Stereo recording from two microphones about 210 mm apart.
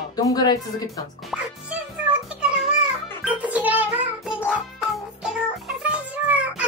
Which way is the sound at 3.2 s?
5° right (ahead or behind).